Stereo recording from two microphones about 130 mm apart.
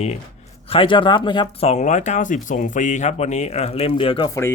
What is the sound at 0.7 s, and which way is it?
Speech, 40° left (ahead or behind).